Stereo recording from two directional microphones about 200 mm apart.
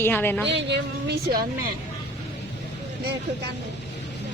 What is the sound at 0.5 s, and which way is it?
Speech, 60° right (ahead or behind).